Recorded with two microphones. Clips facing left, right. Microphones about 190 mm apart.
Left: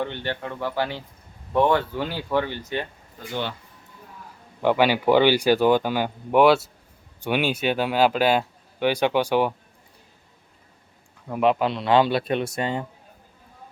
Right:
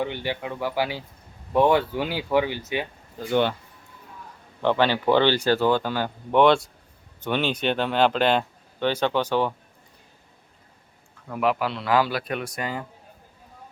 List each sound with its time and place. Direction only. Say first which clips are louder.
0.0 s speech: right 1 dB; 10° right (ahead or behind)
4.6 s speech: left 2 dB; 10° left (ahead or behind)
11.3 s speech: left 3 dB; 20° left (ahead or behind)